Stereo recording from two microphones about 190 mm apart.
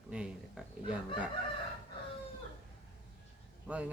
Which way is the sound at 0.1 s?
5° right (ahead or behind).